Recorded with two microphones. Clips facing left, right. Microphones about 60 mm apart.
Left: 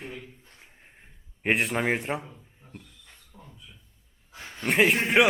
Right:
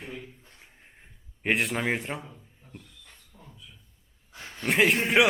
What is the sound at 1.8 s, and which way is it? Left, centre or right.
Speech, centre.